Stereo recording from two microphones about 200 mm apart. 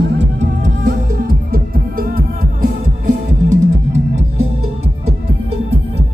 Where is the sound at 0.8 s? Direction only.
45° right (ahead or behind).